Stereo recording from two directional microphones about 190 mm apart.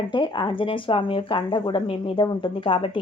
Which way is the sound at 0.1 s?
25° left (ahead or behind).